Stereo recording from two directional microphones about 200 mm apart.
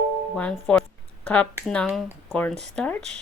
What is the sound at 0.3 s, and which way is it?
Speech, 5° left (ahead or behind).